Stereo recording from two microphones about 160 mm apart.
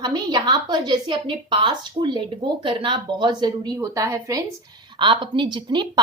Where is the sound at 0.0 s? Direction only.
25° right (ahead or behind).